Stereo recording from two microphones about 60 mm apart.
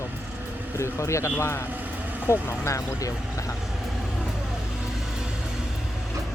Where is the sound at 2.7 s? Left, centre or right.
Left.